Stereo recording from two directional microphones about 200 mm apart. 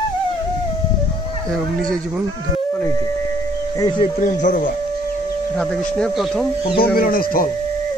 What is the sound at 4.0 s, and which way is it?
Speech, 40° left (ahead or behind).